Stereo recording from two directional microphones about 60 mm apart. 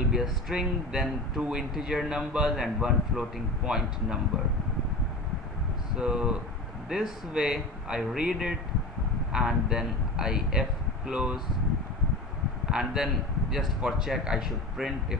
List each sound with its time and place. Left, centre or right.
0.1 s speech: centre
5.9 s speech: centre
12.7 s speech: centre